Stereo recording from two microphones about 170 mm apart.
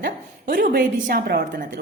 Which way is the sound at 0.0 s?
55° right (ahead or behind).